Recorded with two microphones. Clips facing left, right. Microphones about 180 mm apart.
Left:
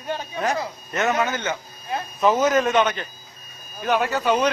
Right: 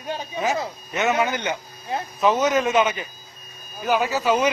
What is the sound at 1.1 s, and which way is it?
Speech, 15° right (ahead or behind).